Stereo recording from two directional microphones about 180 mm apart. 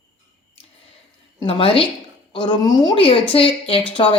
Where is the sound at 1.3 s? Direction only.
30° left (ahead or behind).